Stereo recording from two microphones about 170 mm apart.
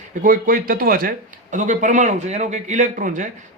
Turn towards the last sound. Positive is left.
turn(degrees=-50)  # may be behind; listen again after turning